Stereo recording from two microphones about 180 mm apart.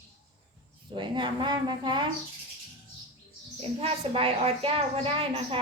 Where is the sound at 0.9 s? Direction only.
25° right (ahead or behind).